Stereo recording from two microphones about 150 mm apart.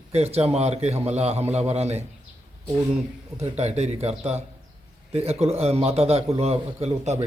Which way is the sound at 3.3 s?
45° right (ahead or behind).